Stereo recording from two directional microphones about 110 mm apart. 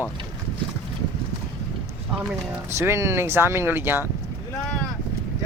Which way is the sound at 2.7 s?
25° right (ahead or behind).